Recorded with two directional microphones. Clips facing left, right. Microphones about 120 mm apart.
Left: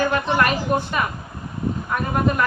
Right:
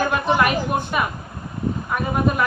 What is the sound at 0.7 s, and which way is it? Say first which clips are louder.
Speech: left 2 dB; 5° right (ahead or behind).